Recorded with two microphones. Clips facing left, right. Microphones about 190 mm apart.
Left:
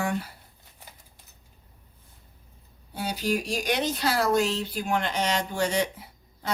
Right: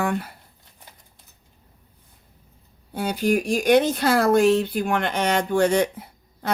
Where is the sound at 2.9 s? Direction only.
55° right (ahead or behind).